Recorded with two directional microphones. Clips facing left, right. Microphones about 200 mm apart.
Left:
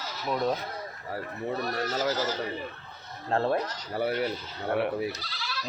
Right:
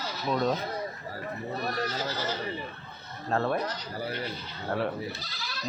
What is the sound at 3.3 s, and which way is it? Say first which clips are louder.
Speech: left 2 dB; 30° left (ahead or behind).